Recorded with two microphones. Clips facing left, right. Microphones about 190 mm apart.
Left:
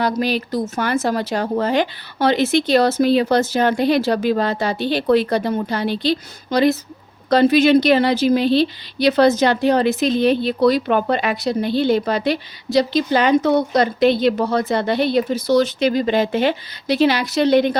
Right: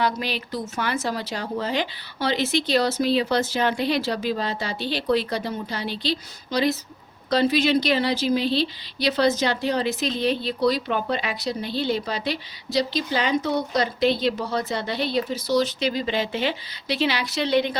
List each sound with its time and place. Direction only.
0.0 s a woman's voice: 40° left (ahead or behind)